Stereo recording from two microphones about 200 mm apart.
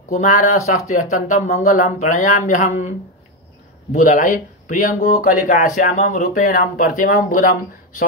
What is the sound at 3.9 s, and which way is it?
Speech, 40° left (ahead or behind).